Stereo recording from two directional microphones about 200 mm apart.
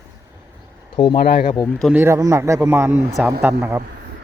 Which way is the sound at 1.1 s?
50° left (ahead or behind).